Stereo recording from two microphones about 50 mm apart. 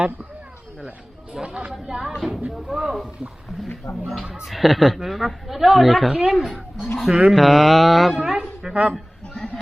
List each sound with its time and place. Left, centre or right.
0.9 s speech: right
1.7 s a woman's voice: centre
4.1 s a woman's voice: centre
7.0 s a woman's voice: centre
8.7 s speech: right